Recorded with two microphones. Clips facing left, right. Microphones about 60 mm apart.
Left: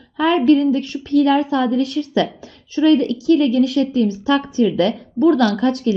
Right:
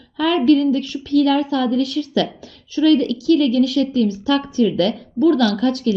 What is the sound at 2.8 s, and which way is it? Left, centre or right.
A woman's voice, left.